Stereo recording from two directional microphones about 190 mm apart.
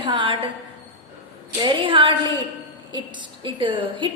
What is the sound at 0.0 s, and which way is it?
Speech, 25° right (ahead or behind).